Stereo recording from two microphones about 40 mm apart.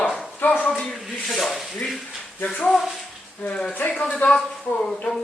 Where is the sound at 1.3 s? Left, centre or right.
Centre.